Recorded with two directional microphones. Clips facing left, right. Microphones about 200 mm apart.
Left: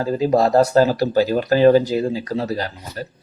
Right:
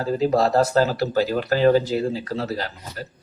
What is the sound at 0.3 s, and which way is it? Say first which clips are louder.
Speech: left 5 dB; 15° left (ahead or behind).